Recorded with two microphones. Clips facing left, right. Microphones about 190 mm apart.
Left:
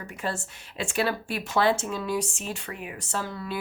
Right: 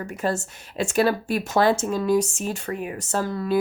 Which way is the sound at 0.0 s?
45° right (ahead or behind).